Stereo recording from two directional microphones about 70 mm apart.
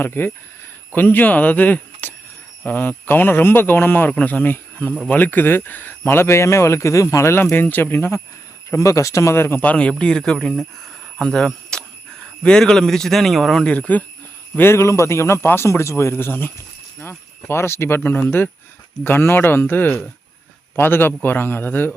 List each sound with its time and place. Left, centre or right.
0.0 s speech: left
8.7 s a man's voice: left
9.6 s a man's voice: centre
13.7 s speech: left
14.5 s speech: left